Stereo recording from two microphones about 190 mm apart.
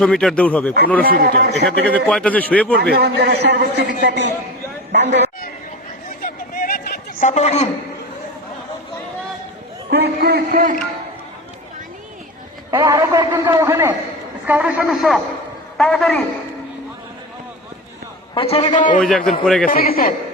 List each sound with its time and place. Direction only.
0.0 s a man's voice: 5° left (ahead or behind)
1.0 s speech: 50° right (ahead or behind)
1.9 s a man's voice: 5° left (ahead or behind)
2.8 s a man's voice: 55° right (ahead or behind)
6.1 s a sound: 45° left (ahead or behind)
9.9 s a man's voice: 60° right (ahead or behind)
12.7 s a man's voice: 20° right (ahead or behind); by 16.2 s 5° left (ahead or behind)
18.3 s a man's voice: 30° left (ahead or behind)
18.9 s a man's voice: centre (ahead or behind)
19.6 s a man's voice: 50° left (ahead or behind)